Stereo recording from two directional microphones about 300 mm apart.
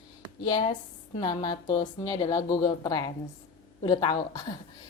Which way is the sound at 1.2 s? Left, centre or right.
Centre.